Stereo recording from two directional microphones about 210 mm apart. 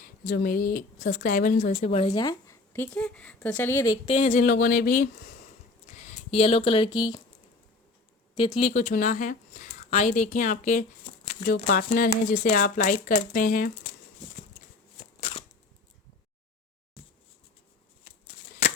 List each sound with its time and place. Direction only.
0.3 s a woman's voice: 45° left (ahead or behind); by 3.9 s 10° left (ahead or behind)
4.0 s a woman's voice: 30° left (ahead or behind)
8.4 s a woman's voice: 25° left (ahead or behind); by 13.7 s 40° left (ahead or behind)
15.2 s a sound: 25° left (ahead or behind)